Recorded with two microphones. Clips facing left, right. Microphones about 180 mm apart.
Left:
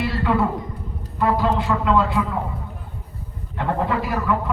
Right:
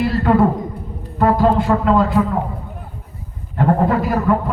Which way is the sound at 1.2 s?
45° right (ahead or behind).